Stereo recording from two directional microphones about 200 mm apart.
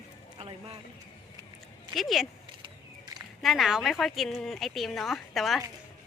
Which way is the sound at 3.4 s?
Centre (ahead or behind).